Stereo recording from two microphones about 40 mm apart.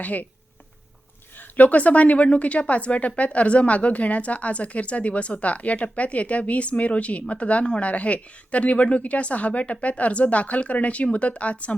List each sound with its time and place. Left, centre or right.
0.0 s a woman's voice: left
1.4 s a woman's voice: left